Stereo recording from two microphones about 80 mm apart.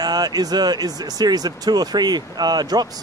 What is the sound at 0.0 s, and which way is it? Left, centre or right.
Speech, right.